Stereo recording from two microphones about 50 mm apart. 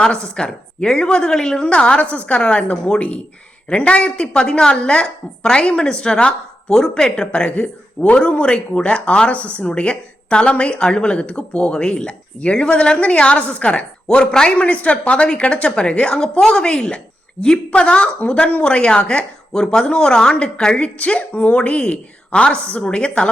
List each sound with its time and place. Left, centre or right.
0.0 s a woman's voice: centre